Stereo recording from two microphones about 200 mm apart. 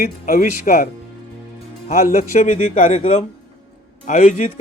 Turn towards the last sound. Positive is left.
turn(degrees=35)  # may be behind; listen again after turning